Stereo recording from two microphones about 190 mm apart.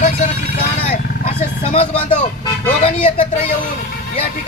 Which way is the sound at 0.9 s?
35° left (ahead or behind).